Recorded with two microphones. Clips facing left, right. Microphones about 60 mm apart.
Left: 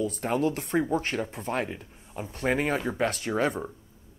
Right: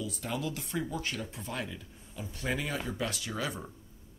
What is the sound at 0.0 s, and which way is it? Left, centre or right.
A man's voice, left.